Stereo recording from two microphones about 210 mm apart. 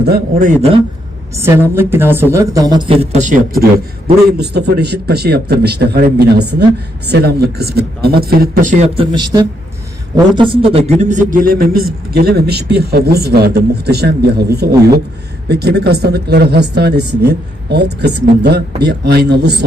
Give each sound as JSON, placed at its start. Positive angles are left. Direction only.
{"t": 0.0, "sound": "speech", "side_deg": -45}
{"t": 1.4, "sound": "a woman's voice", "side_deg": -10}
{"t": 9.0, "sound": "a man's voice", "side_deg": -20}